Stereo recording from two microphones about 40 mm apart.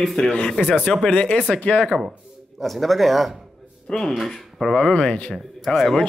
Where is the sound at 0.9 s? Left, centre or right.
Centre.